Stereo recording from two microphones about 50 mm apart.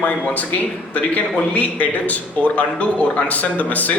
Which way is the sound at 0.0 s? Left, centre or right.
Left.